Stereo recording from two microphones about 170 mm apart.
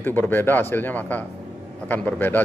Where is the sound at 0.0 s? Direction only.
10° left (ahead or behind).